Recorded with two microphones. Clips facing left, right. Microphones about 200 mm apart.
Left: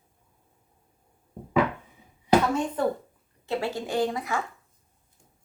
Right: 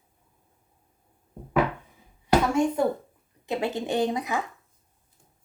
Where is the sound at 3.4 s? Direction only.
20° right (ahead or behind).